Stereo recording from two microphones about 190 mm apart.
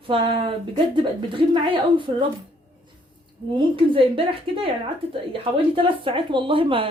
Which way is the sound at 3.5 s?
25° right (ahead or behind).